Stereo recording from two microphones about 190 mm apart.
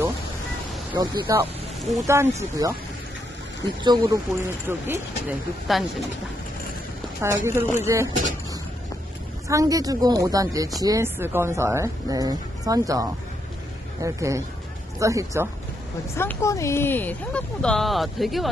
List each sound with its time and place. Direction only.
0.9 s speech: 20° right (ahead or behind)
3.8 s speech: 20° right (ahead or behind)
5.7 s speech: centre (ahead or behind)
7.2 s speech: 15° right (ahead or behind)
9.5 s speech: 20° right (ahead or behind)
14.0 s speech: 15° right (ahead or behind)
16.2 s speech: 15° left (ahead or behind)